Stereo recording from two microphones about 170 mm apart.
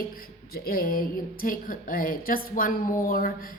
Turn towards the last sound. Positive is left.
turn(degrees=55)  # may be behind; listen again after turning